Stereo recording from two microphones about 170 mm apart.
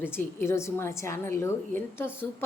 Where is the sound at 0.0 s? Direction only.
15° left (ahead or behind).